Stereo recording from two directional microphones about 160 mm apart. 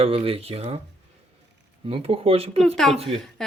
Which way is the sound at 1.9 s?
35° right (ahead or behind).